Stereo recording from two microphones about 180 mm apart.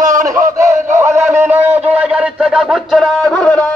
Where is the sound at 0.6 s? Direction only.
15° right (ahead or behind).